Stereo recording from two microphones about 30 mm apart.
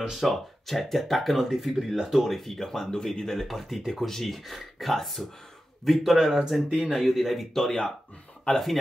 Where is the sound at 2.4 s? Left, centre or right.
Centre.